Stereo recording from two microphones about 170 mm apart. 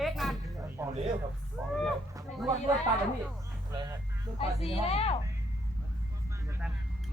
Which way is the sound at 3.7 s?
25° right (ahead or behind).